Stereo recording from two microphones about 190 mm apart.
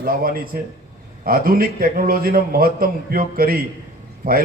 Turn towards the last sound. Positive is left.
turn(degrees=-50)  # may be behind; listen again after turning